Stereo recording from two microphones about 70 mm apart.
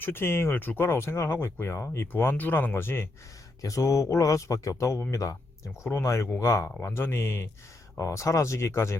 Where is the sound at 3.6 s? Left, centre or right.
Left.